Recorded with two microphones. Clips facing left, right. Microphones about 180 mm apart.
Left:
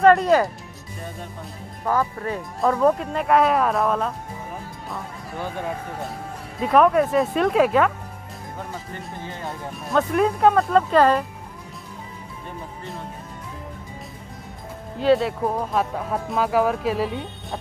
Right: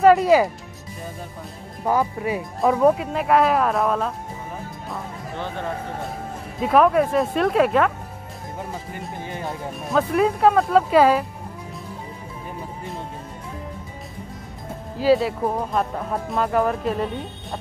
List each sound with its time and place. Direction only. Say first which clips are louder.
0.0 s speech: right 1 dB; 5° right (ahead or behind)
1.9 s speech: right 2 dB; 15° right (ahead or behind)
4.8 s music: right 2 dB; 5° left (ahead or behind)
6.6 s speech: even; centre (ahead or behind)
8.9 s speech: right 2 dB; 15° right (ahead or behind)
9.8 s speech: even; centre (ahead or behind)
15.0 s speech: right 1 dB; centre (ahead or behind)